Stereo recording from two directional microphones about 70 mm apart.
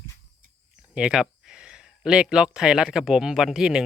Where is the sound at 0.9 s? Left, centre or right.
Centre.